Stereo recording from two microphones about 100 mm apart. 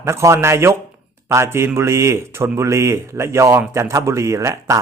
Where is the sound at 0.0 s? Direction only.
30° right (ahead or behind).